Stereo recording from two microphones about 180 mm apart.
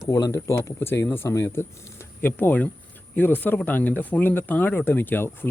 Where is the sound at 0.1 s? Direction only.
15° left (ahead or behind).